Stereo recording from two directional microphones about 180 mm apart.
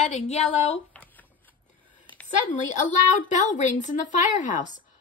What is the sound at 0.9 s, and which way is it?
Shuffling cards, 10° left (ahead or behind).